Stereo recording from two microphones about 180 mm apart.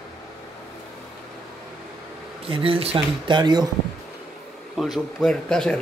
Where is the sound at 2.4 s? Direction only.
30° right (ahead or behind).